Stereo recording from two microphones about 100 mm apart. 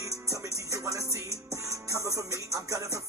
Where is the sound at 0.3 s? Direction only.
35° right (ahead or behind).